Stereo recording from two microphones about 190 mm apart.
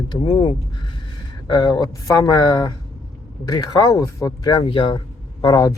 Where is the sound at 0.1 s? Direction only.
25° left (ahead or behind).